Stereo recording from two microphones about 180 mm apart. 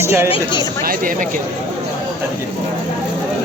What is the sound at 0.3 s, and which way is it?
Speech, 25° left (ahead or behind).